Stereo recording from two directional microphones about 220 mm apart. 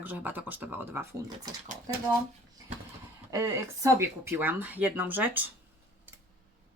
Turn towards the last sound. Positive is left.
turn(degrees=-10)  # may be behind; listen again after turning